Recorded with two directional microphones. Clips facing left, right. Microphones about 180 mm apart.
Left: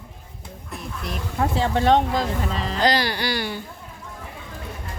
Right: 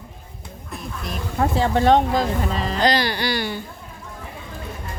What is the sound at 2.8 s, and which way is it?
Speech, 10° left (ahead or behind).